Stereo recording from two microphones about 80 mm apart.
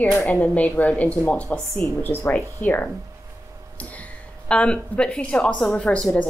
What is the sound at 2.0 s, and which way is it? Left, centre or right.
Speech, left.